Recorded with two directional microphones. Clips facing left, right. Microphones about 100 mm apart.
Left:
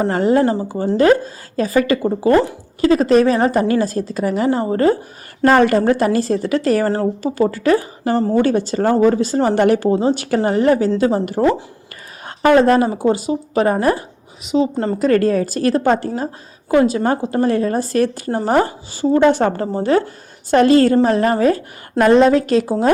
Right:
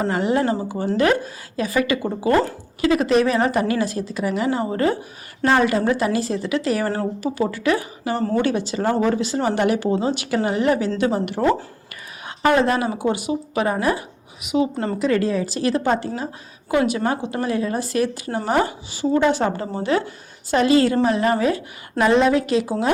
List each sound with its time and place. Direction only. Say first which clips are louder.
0.1 s a woman's voice: left 5 dB; 35° left (ahead or behind)
5.5 s a woman's voice: left 5 dB; 50° left (ahead or behind)
6.8 s a woman's voice: left 5 dB; 35° left (ahead or behind)
12.5 s a woman's voice: left 6 dB; 40° left (ahead or behind)
14.4 s a woman's voice: left 4 dB; 30° left (ahead or behind)
14.9 s a woman's voice: left 6 dB; 45° left (ahead or behind)
16.7 s a woman's voice: left 5 dB; 35° left (ahead or behind)
19.2 s a woman's voice: left 5 dB; 50° left (ahead or behind)